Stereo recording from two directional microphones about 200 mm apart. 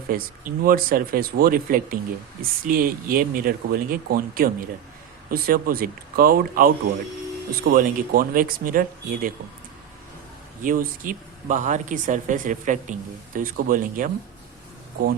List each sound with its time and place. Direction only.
0.1 s speech: 45° right (ahead or behind)
10.6 s speech: 40° right (ahead or behind)